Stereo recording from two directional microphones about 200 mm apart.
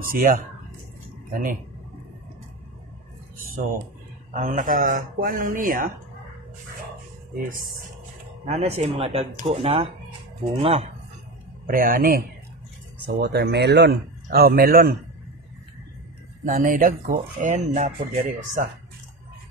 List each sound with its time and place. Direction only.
0.1 s speech: 45° right (ahead or behind)
4.3 s speech: 40° right (ahead or behind)
8.5 s speech: 35° right (ahead or behind)
11.6 s speech: 45° right (ahead or behind)
16.4 s speech: 40° right (ahead or behind)